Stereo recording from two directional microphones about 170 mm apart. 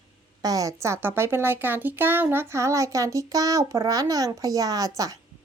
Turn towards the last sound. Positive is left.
turn(degrees=-20)  # may be behind; listen again after turning